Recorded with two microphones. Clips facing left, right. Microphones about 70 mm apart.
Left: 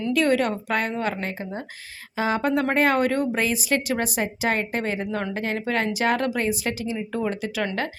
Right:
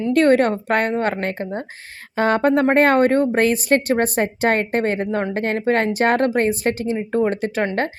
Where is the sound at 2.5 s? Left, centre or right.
Right.